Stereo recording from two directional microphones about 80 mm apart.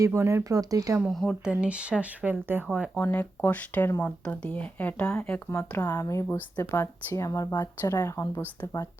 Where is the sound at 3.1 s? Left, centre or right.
Left.